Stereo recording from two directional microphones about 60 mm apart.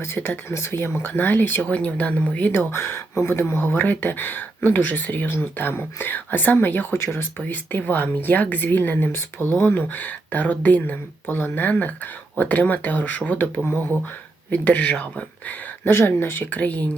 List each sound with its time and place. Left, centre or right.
0.0 s speech: left
2.7 s speech: left
15.8 s speech: left
16.6 s speech: left